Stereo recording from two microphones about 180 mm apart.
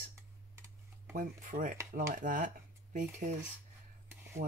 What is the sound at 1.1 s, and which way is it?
Speech, 45° right (ahead or behind).